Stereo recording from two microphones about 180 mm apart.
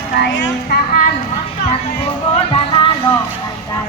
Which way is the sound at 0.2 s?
80° left.